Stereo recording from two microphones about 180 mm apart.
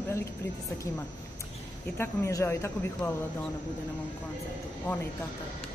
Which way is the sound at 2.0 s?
15° left (ahead or behind).